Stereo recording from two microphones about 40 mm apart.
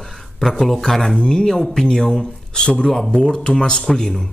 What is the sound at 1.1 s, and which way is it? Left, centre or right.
Speech, centre.